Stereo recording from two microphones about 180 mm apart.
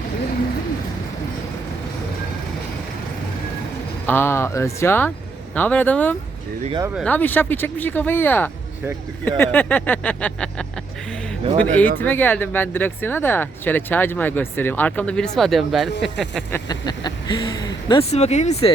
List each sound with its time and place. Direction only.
4.0 s speech: 10° left (ahead or behind)
11.5 s speech: 10° left (ahead or behind)
16.5 s speech: 25° left (ahead or behind)
18.1 s speech: 40° left (ahead or behind)